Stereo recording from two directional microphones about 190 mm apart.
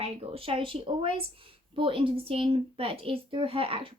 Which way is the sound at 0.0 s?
30° right (ahead or behind).